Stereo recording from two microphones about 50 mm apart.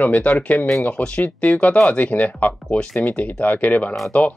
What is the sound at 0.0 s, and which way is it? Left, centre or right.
Speech, left.